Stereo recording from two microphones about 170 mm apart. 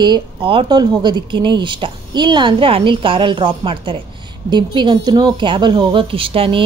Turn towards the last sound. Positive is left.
turn(degrees=-35)  # may be behind; listen again after turning